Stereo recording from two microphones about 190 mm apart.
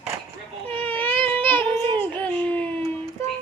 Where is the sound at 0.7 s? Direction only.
10° left (ahead or behind).